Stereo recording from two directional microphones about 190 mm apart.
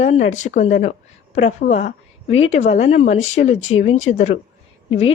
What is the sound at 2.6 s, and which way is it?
Speech, 35° left (ahead or behind).